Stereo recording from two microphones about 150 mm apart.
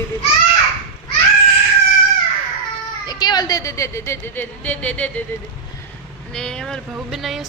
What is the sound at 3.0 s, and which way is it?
A woman's voice, 25° left (ahead or behind).